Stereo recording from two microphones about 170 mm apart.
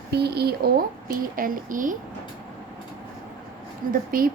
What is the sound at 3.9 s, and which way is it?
Speech, 55° right (ahead or behind).